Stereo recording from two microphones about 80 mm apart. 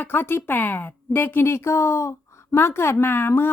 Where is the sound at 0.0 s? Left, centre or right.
Left.